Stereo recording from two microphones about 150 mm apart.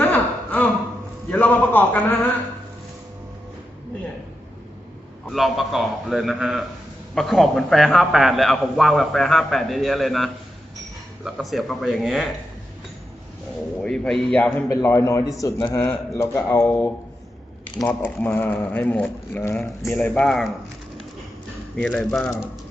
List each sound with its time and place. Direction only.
0.0 s a sound: 10° left (ahead or behind)
1.3 s speech: 10° left (ahead or behind)
5.3 s a man's voice: centre (ahead or behind)
13.8 s speech: 5° left (ahead or behind)
14.7 s a man's voice: 20° left (ahead or behind); by 20.5 s 5° left (ahead or behind)
21.8 s speech: 5° left (ahead or behind)